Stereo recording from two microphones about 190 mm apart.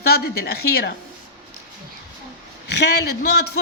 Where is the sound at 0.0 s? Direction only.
55° left (ahead or behind).